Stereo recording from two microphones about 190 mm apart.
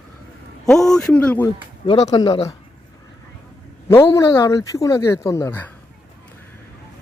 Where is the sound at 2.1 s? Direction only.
25° left (ahead or behind).